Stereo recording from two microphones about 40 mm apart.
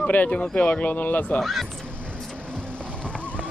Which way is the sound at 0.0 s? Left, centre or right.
Left.